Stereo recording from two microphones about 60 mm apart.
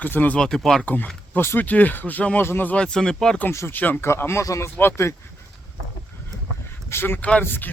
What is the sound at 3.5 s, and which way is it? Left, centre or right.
Speech, left.